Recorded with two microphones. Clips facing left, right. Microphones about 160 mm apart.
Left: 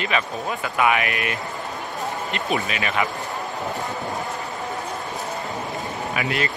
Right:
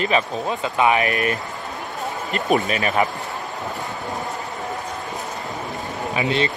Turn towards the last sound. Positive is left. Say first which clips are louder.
# right 4 dB
turn(degrees=-25)  # may be behind; listen again after turning